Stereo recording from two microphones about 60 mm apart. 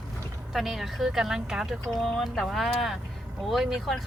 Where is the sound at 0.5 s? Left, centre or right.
Centre.